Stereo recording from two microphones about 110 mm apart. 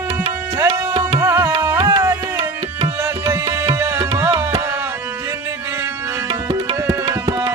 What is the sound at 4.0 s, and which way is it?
Tabla, 35° right (ahead or behind).